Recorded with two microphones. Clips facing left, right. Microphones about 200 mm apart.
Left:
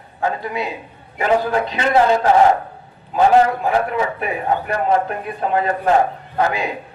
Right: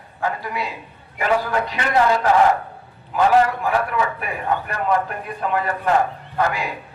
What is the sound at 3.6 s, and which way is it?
Speech, 25° left (ahead or behind).